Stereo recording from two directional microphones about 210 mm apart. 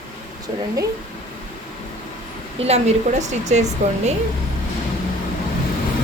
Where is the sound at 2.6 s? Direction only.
30° right (ahead or behind).